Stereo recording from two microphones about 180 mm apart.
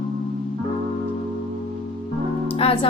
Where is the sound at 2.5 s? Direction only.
30° left (ahead or behind).